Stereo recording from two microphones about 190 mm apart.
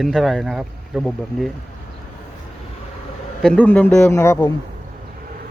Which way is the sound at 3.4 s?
5° left (ahead or behind).